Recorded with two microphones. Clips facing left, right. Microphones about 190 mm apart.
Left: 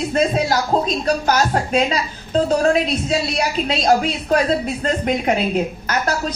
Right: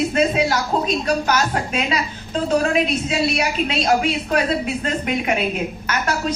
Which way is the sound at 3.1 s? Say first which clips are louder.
Even; 35° left (ahead or behind).